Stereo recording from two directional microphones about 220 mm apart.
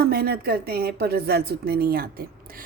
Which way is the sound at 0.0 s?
45° right (ahead or behind).